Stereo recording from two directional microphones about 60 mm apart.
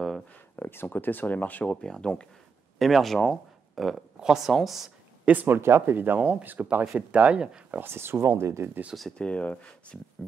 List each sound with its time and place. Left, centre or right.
0.6 s speech: left
1.8 s speech: centre
2.8 s speech: centre
5.2 s speech: right
5.6 s speech: right; by 7.8 s centre
7.8 s speech: right
9.2 s speech: centre